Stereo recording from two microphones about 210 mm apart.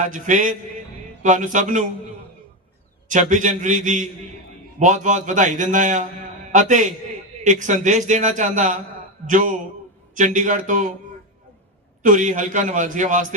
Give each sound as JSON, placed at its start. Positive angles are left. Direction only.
{"t": 0.0, "sound": "a man's voice", "side_deg": -40}
{"t": 3.1, "sound": "a man's voice", "side_deg": -35}
{"t": 12.0, "sound": "a man's voice", "side_deg": -40}